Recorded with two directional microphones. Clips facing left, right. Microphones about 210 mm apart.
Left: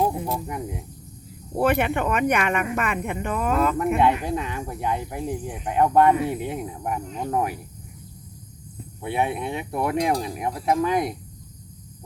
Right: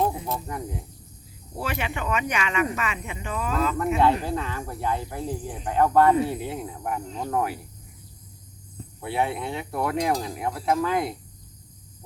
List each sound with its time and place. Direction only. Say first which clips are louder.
0.3 s speech: left 2 dB; 15° left (ahead or behind)
1.5 s speech: left 9 dB; 55° left (ahead or behind)
3.9 s speech: left 1 dB; 20° left (ahead or behind)
9.0 s speech: left 2 dB; 20° left (ahead or behind)